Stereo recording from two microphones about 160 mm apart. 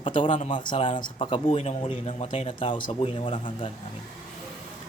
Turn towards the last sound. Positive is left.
turn(degrees=35)  # may be behind; listen again after turning